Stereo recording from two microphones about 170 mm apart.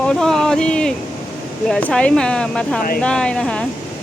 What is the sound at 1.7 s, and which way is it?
Speech, 5° left (ahead or behind).